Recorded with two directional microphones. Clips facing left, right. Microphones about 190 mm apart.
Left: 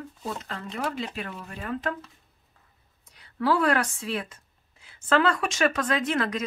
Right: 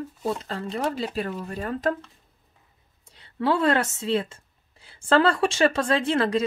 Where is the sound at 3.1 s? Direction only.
25° right (ahead or behind).